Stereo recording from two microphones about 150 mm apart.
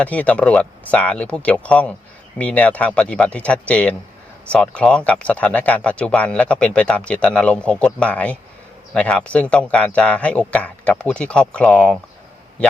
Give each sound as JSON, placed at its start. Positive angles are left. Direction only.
{"t": 0.0, "sound": "speech", "side_deg": 10}